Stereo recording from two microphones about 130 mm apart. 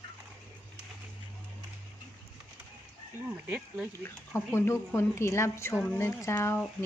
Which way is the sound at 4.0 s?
20° left (ahead or behind).